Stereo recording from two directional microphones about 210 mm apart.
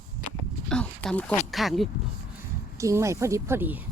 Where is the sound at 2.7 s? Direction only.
15° right (ahead or behind).